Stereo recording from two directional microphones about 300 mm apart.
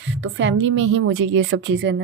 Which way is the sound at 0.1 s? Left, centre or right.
Right.